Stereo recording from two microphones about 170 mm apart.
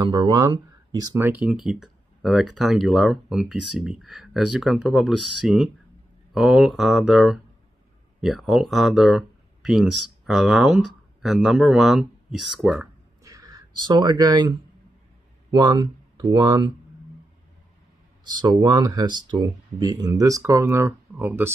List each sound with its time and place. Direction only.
0.0 s speech: 25° right (ahead or behind)
1.4 s speech: 5° right (ahead or behind)
13.2 s a sound: 20° right (ahead or behind)
15.5 s speech: 25° right (ahead or behind)
18.2 s speech: 25° right (ahead or behind)